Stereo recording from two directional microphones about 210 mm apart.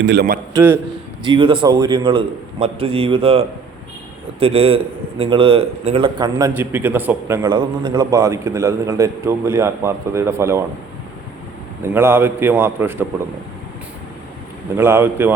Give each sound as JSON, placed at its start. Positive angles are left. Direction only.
{"t": 0.0, "sound": "a man's voice", "side_deg": -50}
{"t": 0.5, "sound": "a man's voice", "side_deg": -10}
{"t": 1.2, "sound": "a man's voice", "side_deg": -25}
{"t": 6.5, "sound": "a man's voice", "side_deg": -10}
{"t": 11.9, "sound": "a man's voice", "side_deg": -10}
{"t": 14.8, "sound": "a man's voice", "side_deg": -10}